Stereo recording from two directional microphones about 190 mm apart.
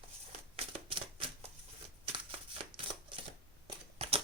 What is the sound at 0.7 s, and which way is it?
Typewriter, 30° right (ahead or behind).